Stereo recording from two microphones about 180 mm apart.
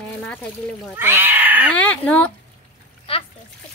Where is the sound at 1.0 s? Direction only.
10° right (ahead or behind).